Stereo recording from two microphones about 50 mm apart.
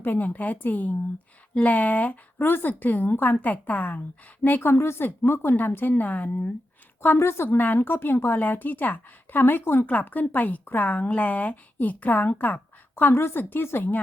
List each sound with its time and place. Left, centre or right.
0.0 s a woman's voice: left
2.4 s a woman's voice: left
4.6 s a woman's voice: left
7.0 s a woman's voice: left
7.5 s a woman's voice: left
9.8 s a woman's voice: left
12.3 s a sound: left
13.1 s speech: left
13.4 s a woman's voice: left